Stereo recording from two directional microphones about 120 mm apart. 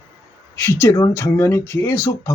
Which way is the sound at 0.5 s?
20° left (ahead or behind).